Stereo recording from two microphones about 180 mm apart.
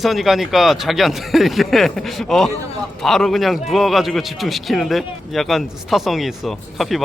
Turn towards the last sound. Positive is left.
turn(degrees=0)  # may be behind; listen again after turning